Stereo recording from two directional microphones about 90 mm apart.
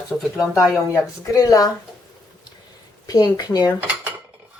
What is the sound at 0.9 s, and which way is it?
Speech, 35° left (ahead or behind).